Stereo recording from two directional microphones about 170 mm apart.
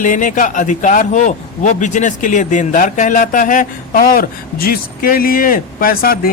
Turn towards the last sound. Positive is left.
turn(degrees=60)  # may be behind; listen again after turning